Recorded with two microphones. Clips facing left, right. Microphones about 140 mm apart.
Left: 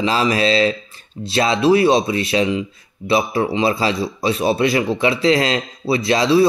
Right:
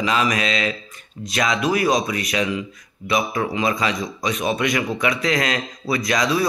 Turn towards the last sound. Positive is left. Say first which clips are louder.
# left 6 dB
turn(degrees=30)  # may be behind; listen again after turning